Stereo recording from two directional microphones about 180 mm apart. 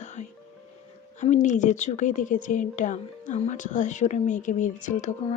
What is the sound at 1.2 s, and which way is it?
A woman's voice, 40° left (ahead or behind).